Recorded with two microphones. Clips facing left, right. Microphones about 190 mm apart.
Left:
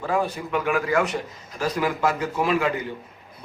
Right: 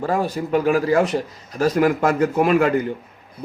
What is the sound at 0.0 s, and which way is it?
Speech, 40° right (ahead or behind).